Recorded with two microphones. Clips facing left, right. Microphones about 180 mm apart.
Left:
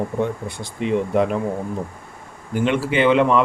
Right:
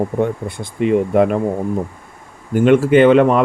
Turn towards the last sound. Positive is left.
turn(degrees=-45)  # may be behind; listen again after turning